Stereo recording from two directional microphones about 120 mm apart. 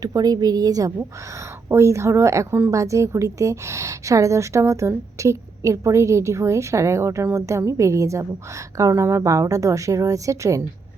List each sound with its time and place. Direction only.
0.0 s a woman's voice: 30° right (ahead or behind)